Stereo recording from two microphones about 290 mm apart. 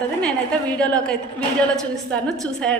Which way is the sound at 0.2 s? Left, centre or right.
Centre.